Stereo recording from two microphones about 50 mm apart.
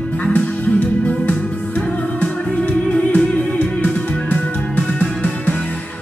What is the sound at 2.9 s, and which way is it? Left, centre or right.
Music, left.